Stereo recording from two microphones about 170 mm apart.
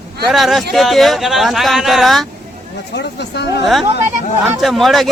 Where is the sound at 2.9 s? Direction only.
85° left.